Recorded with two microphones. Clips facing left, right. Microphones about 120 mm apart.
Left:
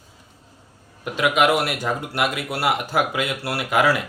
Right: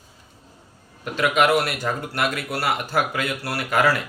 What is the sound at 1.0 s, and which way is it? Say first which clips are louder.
Speech: left 1 dB; 15° left (ahead or behind).